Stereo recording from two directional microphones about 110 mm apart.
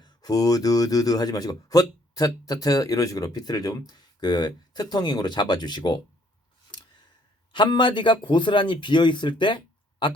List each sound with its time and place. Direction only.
0.0 s speech: 35° left (ahead or behind)
7.5 s speech: 45° left (ahead or behind)